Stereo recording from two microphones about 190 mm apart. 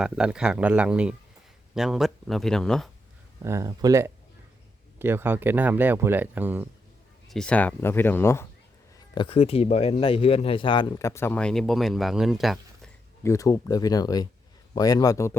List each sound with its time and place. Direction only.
0.0 s speech: 5° right (ahead or behind)
3.4 s speech: 15° right (ahead or behind)
7.3 s speech: 5° left (ahead or behind)
9.1 s speech: 30° left (ahead or behind); by 12.9 s centre (ahead or behind)
13.2 s speech: 15° left (ahead or behind)